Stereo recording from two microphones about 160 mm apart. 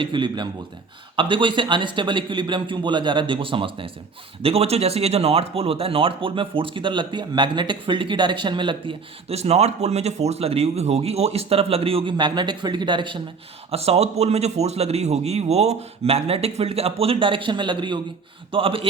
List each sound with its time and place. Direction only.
0.0 s a man's voice: 30° right (ahead or behind)